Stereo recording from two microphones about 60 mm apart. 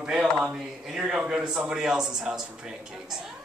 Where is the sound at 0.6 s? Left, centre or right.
Centre.